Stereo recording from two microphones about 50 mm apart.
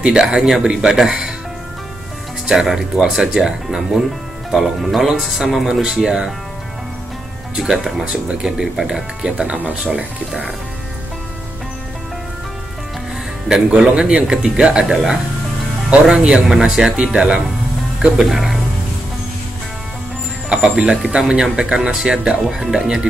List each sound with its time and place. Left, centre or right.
0.0 s speech: centre
2.4 s speech: centre
7.5 s speech: centre
13.5 s speech: centre
20.4 s speech: centre
20.9 s speech: centre